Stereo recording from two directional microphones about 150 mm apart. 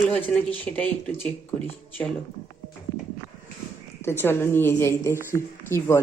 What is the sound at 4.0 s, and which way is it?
A woman's voice, 15° left (ahead or behind).